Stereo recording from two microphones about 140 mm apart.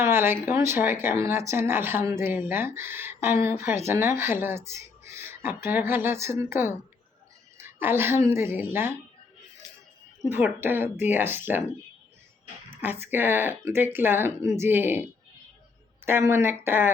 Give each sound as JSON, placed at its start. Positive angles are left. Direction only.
{"t": 0.0, "sound": "speech", "side_deg": -15}
{"t": 10.2, "sound": "speech", "side_deg": -15}
{"t": 12.7, "sound": "speech", "side_deg": -15}